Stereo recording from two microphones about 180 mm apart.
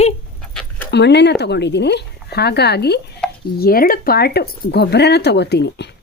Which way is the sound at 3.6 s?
55° left (ahead or behind).